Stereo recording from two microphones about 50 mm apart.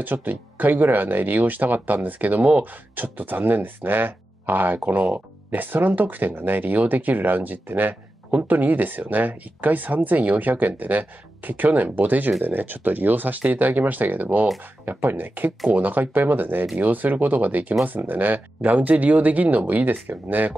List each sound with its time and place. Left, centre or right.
0.0 s speech: right